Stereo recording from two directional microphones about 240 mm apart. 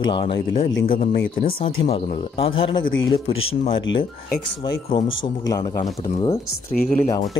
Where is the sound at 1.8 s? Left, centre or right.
Left.